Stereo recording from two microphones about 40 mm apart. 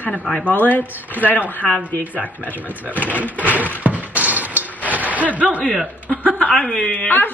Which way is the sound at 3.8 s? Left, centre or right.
Right.